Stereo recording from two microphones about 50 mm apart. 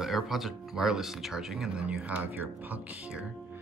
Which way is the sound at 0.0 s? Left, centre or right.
Centre.